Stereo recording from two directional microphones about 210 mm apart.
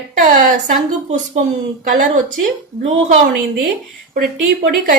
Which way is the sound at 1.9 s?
40° right (ahead or behind).